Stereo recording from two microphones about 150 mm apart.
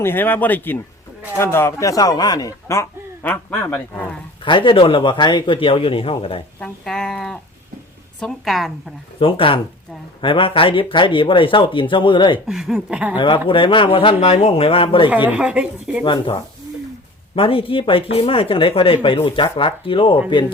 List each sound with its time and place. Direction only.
0.0 s speech: 15° left (ahead or behind)
4.4 s speech: 35° left (ahead or behind)
6.6 s speech: 5° left (ahead or behind)
9.1 s speech: 35° left (ahead or behind)
12.5 s speech: 5° right (ahead or behind)
13.1 s speech: 30° left (ahead or behind)
15.3 s speech: 10° right (ahead or behind)
16.0 s speech: 35° left (ahead or behind)